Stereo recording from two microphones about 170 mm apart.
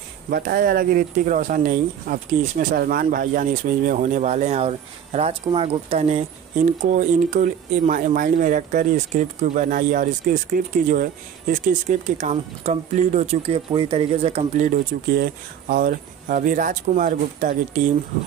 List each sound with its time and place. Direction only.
0.3 s speech: 60° right (ahead or behind)
2.7 s speech: 65° right (ahead or behind); by 9.7 s 40° right (ahead or behind)
9.7 s speech: 55° right (ahead or behind)
13.7 s speech: 30° right (ahead or behind)
14.9 s speech: 65° right (ahead or behind)
15.7 s speech: 55° right (ahead or behind)